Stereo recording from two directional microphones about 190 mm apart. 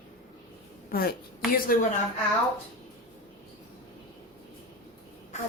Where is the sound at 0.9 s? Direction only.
50° left (ahead or behind).